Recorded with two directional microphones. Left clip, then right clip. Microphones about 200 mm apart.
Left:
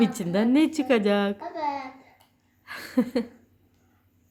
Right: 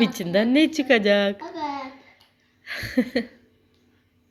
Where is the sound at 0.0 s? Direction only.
10° left (ahead or behind).